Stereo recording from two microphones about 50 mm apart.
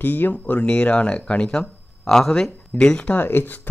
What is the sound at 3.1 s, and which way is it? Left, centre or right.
Speech, left.